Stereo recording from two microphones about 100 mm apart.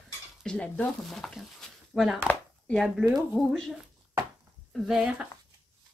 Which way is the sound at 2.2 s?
10° left (ahead or behind).